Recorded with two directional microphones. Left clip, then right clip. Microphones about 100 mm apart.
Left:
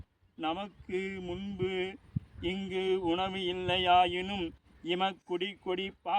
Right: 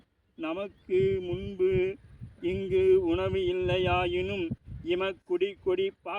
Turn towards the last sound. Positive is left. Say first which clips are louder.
# right 5 dB
turn(degrees=40)  # may be behind; listen again after turning